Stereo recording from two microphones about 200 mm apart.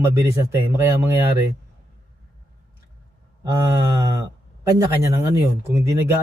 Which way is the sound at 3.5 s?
20° right (ahead or behind).